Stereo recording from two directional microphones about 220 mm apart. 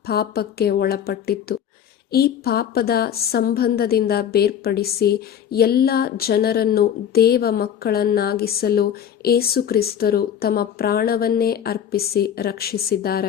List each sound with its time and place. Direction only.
0.0 s a woman's voice: 45° left (ahead or behind)